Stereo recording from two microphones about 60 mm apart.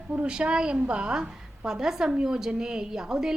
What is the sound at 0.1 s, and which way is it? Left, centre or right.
A woman's voice, centre.